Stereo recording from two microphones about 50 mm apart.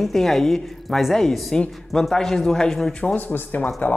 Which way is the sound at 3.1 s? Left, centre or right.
Left.